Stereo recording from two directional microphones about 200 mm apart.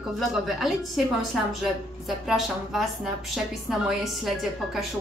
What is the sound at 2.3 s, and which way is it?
A woman's voice, centre (ahead or behind).